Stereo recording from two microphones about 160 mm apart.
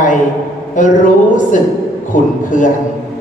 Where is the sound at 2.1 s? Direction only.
55° left (ahead or behind).